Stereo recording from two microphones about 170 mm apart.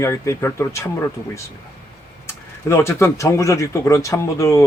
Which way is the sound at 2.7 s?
15° left (ahead or behind).